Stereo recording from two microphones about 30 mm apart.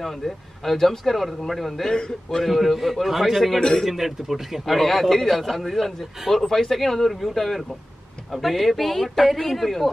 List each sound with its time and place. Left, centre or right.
0.0 s speech: centre
1.9 s a man's voice: left
2.4 s a man's voice: centre
4.6 s a man's voice: centre